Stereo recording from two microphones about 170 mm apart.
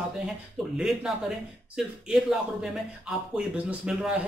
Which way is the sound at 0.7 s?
Centre (ahead or behind).